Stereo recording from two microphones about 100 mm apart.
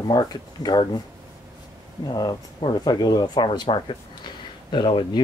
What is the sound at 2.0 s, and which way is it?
Speech, 45° left (ahead or behind).